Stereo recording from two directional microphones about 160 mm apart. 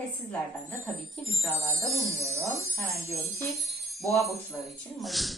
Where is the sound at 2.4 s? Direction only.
15° left (ahead or behind).